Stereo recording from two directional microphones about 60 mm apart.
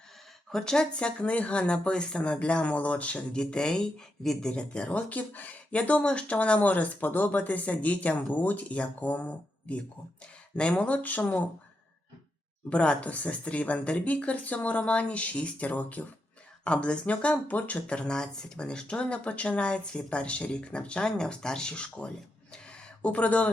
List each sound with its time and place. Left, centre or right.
0.5 s speech: centre
12.7 s speech: centre
22.5 s a sound: centre